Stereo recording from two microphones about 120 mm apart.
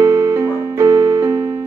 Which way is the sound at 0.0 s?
20° right (ahead or behind).